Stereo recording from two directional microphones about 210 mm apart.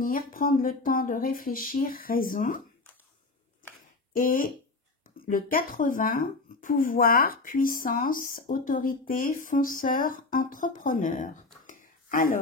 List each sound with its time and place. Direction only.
0.0 s speech: 45° left (ahead or behind)
4.1 s speech: 40° left (ahead or behind)